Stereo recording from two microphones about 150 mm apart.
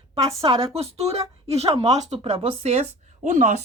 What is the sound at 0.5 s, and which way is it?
Speech, 40° right (ahead or behind).